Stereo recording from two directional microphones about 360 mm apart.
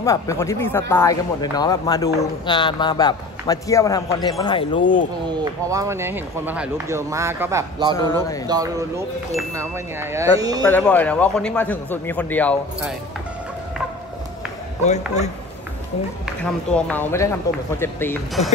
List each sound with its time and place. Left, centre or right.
0.0 s a man's voice: centre
5.3 s speech: centre
7.9 s a man's voice: centre
8.5 s speech: centre
10.7 s a man's voice: centre
14.9 s speech: centre
16.7 s a man's voice: centre